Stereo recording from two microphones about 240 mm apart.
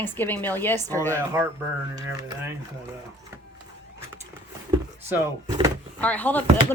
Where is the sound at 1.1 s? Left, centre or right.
Centre.